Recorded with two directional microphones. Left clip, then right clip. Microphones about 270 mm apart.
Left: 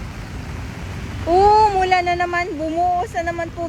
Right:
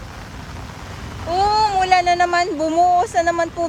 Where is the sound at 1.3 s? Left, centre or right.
Centre.